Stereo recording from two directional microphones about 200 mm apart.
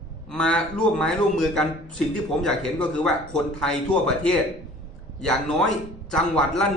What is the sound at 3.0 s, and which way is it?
Speech, centre (ahead or behind).